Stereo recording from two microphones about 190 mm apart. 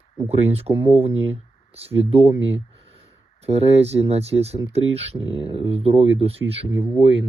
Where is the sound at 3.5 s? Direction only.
35° right (ahead or behind).